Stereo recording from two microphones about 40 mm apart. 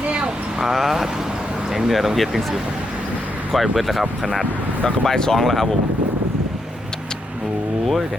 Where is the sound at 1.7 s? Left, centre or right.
Centre.